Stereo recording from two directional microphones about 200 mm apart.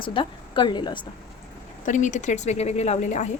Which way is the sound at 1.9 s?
40° left (ahead or behind).